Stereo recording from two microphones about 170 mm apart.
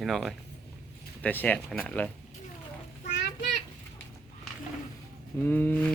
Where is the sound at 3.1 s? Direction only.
90° left.